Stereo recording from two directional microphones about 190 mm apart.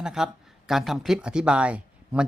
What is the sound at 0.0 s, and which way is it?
Speech, 5° right (ahead or behind).